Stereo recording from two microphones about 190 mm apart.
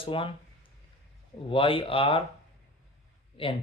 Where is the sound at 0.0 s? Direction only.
25° left (ahead or behind).